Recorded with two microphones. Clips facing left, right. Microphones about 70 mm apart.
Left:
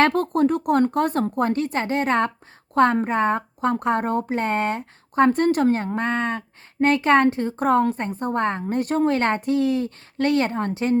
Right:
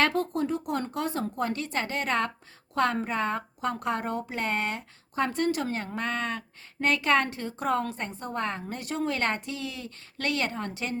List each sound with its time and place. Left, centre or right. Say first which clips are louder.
0.1 s speech: left 8 dB; left
4.4 s speech: left 7 dB; left